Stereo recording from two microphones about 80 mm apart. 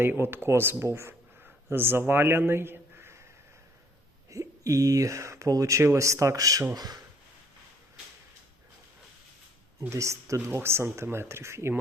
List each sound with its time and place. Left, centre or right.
0.0 s speech: right
2.5 s a sound: right
4.3 s speech: right
9.9 s speech: right